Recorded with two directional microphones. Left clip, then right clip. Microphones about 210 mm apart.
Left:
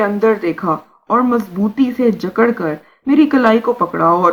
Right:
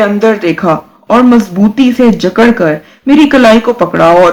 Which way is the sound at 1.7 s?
50° left (ahead or behind).